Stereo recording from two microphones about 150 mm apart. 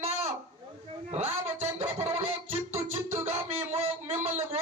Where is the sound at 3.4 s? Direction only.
15° right (ahead or behind).